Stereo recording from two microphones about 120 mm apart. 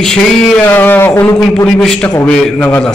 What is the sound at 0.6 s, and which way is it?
Speech, 15° left (ahead or behind).